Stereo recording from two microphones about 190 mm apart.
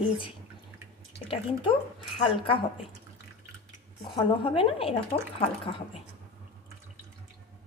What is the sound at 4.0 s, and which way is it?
A woman's voice, 25° left (ahead or behind).